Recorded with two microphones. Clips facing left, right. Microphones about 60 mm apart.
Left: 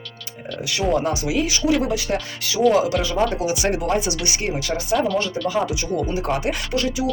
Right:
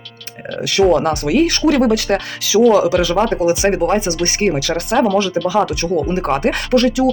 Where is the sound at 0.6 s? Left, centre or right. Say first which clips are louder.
Right 8 dB; right.